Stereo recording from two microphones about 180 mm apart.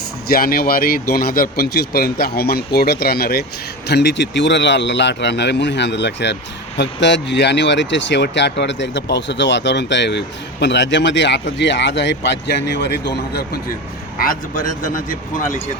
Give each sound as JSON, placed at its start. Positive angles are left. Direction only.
{"t": 0.3, "sound": "speech", "side_deg": 55}
{"t": 3.8, "sound": "speech", "side_deg": 75}
{"t": 14.2, "sound": "a man's voice", "side_deg": 50}